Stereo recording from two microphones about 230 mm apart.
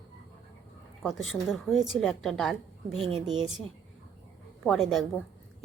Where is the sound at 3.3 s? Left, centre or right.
Right.